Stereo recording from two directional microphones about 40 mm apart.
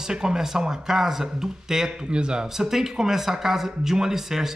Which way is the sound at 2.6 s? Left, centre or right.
Centre.